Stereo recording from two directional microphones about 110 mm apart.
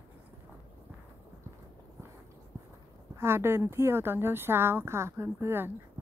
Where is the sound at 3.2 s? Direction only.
20° right (ahead or behind).